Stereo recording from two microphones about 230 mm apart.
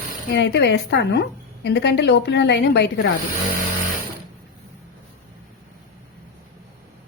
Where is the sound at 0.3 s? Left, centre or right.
Left.